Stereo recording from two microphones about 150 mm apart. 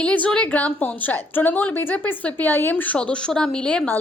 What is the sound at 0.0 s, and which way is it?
A woman's voice, 10° left (ahead or behind).